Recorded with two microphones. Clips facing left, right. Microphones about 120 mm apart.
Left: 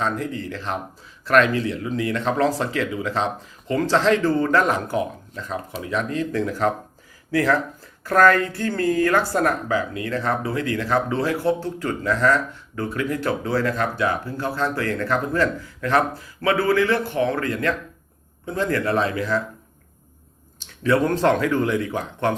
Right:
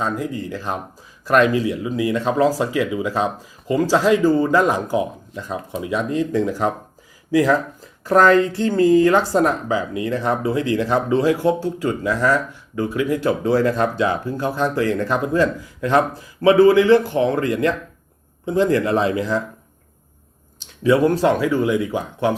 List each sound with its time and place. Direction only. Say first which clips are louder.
0.0 s speech: right 2 dB; 15° right (ahead or behind)
20.8 s speech: right 4 dB; 15° right (ahead or behind)
21.1 s speech: right 2 dB; 5° right (ahead or behind)